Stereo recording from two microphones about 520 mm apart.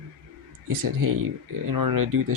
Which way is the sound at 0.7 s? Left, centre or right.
Right.